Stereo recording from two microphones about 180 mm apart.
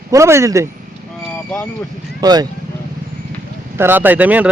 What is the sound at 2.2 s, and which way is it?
Speech, 20° right (ahead or behind).